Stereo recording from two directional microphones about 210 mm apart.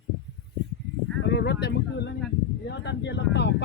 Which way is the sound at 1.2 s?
55° left (ahead or behind).